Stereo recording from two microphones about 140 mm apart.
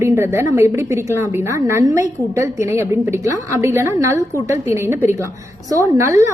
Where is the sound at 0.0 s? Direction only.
20° right (ahead or behind).